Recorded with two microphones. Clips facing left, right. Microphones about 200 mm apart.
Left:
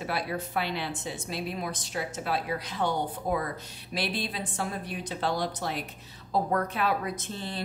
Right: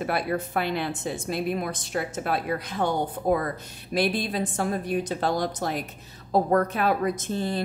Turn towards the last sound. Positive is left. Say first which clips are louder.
# right 8 dB
turn(degrees=-45)  # may be behind; listen again after turning